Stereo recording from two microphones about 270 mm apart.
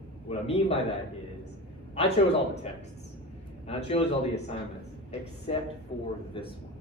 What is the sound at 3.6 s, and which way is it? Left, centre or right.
Speech, left.